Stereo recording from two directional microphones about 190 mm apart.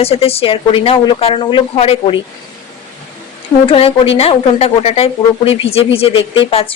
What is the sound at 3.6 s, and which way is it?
A woman's voice, 30° left (ahead or behind).